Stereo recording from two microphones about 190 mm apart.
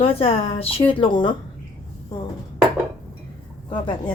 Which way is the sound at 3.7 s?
25° left (ahead or behind).